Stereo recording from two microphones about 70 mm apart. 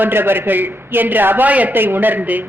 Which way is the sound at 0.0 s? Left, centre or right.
Right.